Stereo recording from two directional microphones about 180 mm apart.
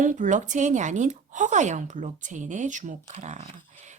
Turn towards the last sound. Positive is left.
turn(degrees=-40)  # may be behind; listen again after turning